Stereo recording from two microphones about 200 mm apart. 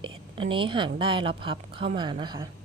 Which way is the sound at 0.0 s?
25° right (ahead or behind).